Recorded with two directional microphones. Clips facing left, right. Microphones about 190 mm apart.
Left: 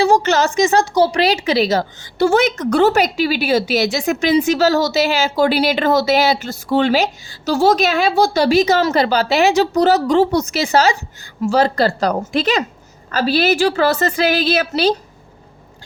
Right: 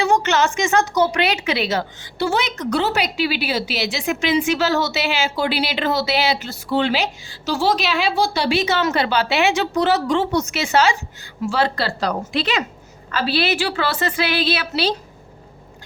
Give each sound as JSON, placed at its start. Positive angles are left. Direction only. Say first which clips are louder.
{"t": 0.0, "sound": "a woman's voice", "louder": "left 4 dB", "side_deg": 35}